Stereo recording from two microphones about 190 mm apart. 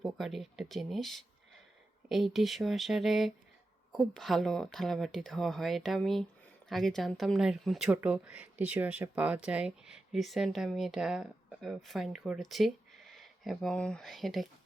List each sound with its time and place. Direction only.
0.0 s speech: centre (ahead or behind)